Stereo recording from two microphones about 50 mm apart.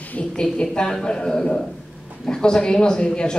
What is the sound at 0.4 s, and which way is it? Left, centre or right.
Speech, centre.